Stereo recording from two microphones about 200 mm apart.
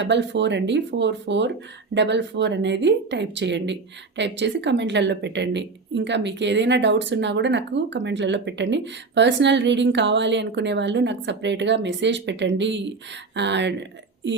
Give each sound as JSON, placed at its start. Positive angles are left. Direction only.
{"t": 0.0, "sound": "a woman's voice", "side_deg": -60}